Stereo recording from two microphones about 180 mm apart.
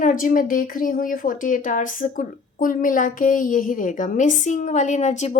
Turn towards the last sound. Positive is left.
turn(degrees=40)  # may be behind; listen again after turning